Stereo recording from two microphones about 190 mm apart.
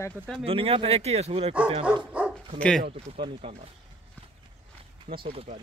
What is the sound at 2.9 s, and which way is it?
Speech, 30° right (ahead or behind).